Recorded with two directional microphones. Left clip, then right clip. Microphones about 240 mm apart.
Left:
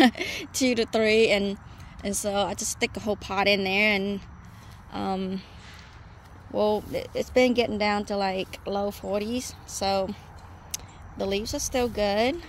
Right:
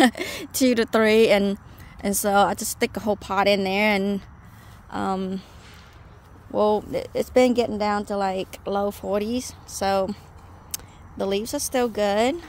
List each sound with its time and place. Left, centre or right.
0.0 s speech: right
6.5 s speech: centre